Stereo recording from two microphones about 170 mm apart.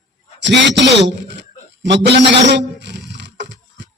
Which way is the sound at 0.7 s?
90° right.